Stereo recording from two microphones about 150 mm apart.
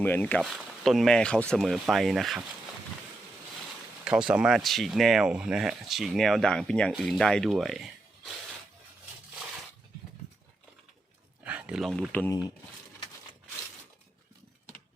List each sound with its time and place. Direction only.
0.0 s speech: 10° left (ahead or behind)
4.0 s speech: 5° right (ahead or behind)
11.4 s speech: 10° right (ahead or behind); by 12.3 s 10° left (ahead or behind)
12.3 s speech: 25° left (ahead or behind)